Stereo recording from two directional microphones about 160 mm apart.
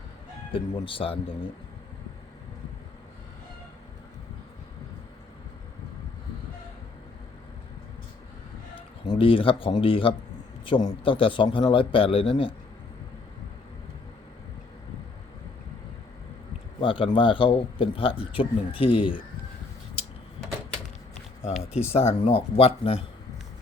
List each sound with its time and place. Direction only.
0.5 s speech: 35° left (ahead or behind)
9.0 s speech: 35° left (ahead or behind)
16.8 s speech: 35° left (ahead or behind)
21.9 s speech: 40° left (ahead or behind)